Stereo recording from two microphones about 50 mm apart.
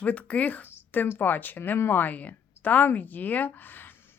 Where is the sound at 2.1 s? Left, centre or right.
Left.